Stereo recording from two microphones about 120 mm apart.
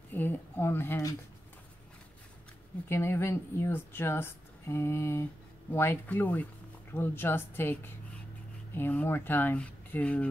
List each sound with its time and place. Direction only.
0.1 s speech: 15° left (ahead or behind)
2.9 s speech: 20° left (ahead or behind)